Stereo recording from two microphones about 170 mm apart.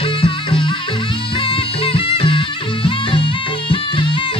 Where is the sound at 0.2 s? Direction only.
30° left (ahead or behind).